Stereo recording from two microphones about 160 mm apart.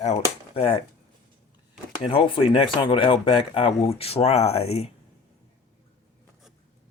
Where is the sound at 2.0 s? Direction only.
35° left (ahead or behind).